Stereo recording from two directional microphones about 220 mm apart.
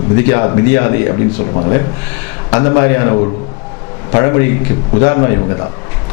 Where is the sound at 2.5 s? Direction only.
10° left (ahead or behind).